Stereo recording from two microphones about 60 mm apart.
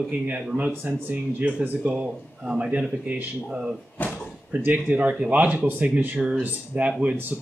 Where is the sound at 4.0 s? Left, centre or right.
Left.